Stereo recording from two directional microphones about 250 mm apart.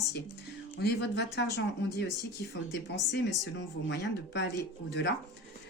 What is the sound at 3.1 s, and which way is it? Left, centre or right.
Speech, left.